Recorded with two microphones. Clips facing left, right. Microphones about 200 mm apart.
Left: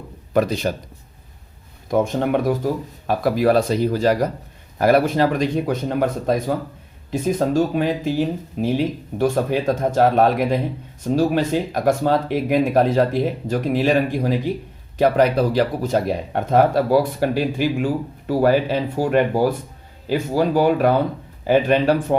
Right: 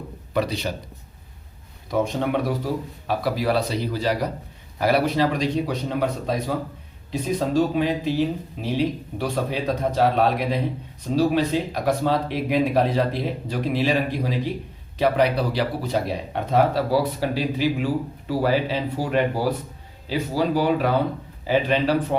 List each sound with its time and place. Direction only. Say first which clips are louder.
0.3 s speech: left 5 dB; 50° left (ahead or behind)
1.9 s speech: left 4 dB; 50° left (ahead or behind)